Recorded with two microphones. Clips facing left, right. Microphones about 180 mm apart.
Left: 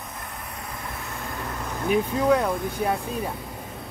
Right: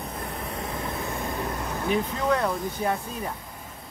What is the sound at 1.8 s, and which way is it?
Speech, 10° left (ahead or behind).